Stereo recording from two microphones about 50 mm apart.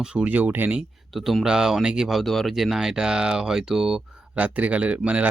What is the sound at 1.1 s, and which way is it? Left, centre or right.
Speech, centre.